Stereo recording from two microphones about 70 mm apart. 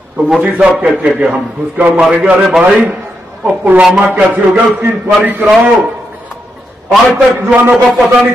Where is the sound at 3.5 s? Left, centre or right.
Right.